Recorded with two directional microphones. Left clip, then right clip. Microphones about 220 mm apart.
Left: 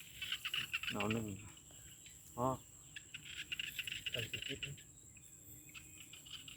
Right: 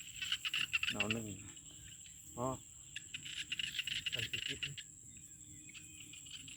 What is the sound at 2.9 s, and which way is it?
Cricket, 45° right (ahead or behind).